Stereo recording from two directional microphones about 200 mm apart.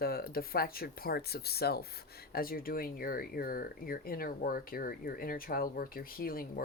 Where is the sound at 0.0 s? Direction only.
50° left (ahead or behind).